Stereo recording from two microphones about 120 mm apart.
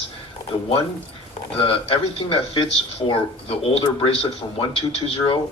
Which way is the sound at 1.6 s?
50° left (ahead or behind).